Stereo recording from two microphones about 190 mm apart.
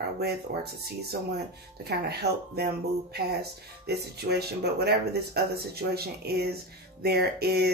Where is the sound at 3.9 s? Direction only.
60° right (ahead or behind).